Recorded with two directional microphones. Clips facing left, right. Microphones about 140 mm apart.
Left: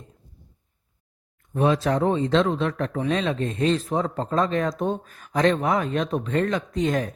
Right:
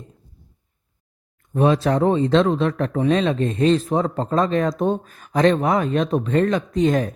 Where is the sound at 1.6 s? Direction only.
35° right (ahead or behind).